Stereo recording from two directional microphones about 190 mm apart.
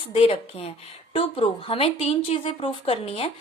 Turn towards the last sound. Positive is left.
turn(degrees=30)  # may be behind; listen again after turning